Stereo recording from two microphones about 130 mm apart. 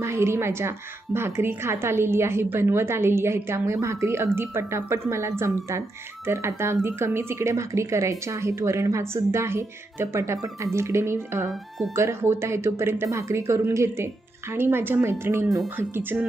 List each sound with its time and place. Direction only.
0.0 s a woman's voice: 20° right (ahead or behind)